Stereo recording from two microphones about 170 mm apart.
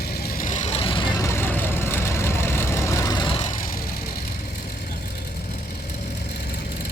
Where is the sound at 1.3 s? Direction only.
10° left (ahead or behind); by 3.4 s 30° left (ahead or behind).